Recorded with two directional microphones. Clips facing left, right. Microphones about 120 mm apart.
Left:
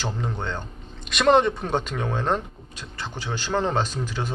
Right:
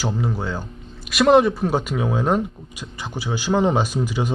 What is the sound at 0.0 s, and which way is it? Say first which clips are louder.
Speech: right 5 dB; 5° right (ahead or behind).